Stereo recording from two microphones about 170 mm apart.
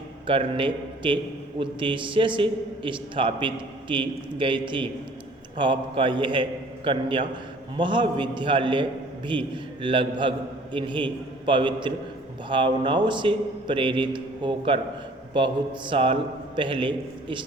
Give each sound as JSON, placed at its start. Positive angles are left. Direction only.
{"t": 0.3, "sound": "a man's voice", "side_deg": -30}